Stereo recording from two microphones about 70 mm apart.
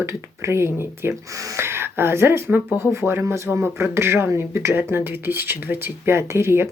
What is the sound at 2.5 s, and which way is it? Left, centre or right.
Speech, right.